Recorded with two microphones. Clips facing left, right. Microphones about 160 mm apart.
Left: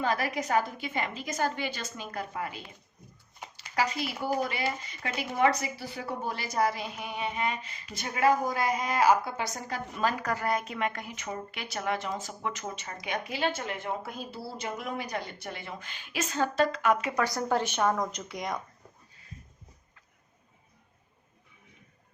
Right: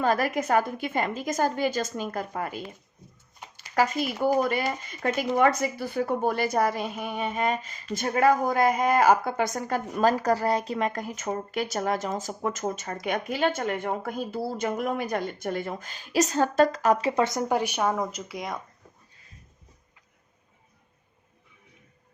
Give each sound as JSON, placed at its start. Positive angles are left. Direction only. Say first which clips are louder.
{"t": 0.0, "sound": "a woman's voice", "louder": "right 5 dB", "side_deg": -45}
{"t": 3.8, "sound": "a woman's voice", "louder": "right 6 dB", "side_deg": -50}